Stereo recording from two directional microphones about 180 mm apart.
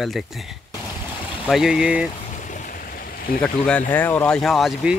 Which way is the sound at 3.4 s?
5° left (ahead or behind).